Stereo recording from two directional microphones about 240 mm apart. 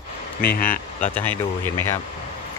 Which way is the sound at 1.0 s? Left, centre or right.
Centre.